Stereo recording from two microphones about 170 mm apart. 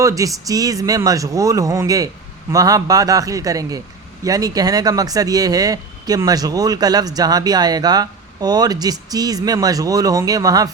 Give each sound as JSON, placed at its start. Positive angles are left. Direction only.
{"t": 0.0, "sound": "speech", "side_deg": -20}